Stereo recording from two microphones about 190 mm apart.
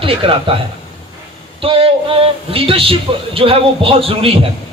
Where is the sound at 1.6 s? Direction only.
30° right (ahead or behind).